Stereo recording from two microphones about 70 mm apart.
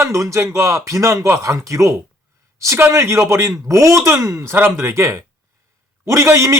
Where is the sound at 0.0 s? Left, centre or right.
Right.